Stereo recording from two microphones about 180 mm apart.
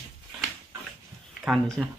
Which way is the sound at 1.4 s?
5° right (ahead or behind).